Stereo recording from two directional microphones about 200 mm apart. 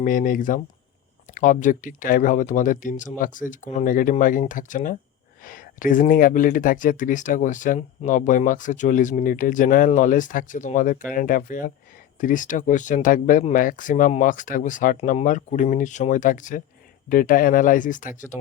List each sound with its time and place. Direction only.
0.0 s speech: 45° left (ahead or behind)